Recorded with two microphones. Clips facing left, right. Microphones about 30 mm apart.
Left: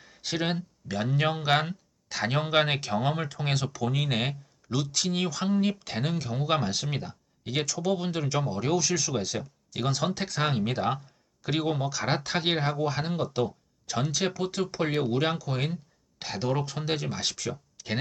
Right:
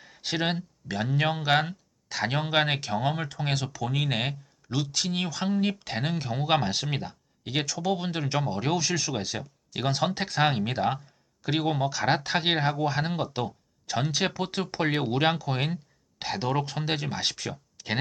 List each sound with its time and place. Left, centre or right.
0.0 s speech: centre
10.6 s speech: centre
17.7 s a sound: centre